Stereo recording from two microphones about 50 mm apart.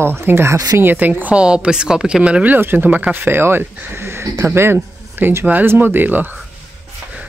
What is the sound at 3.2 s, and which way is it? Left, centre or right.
Speech, right.